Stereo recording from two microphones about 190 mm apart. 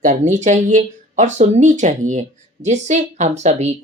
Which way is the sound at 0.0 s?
40° right (ahead or behind).